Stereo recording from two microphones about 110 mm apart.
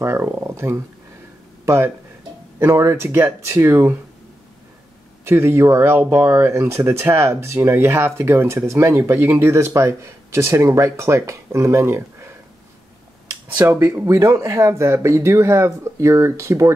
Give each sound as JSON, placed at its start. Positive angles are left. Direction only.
{"t": 0.0, "sound": "speech", "side_deg": -25}
{"t": 5.2, "sound": "speech", "side_deg": -25}
{"t": 13.3, "sound": "speech", "side_deg": -25}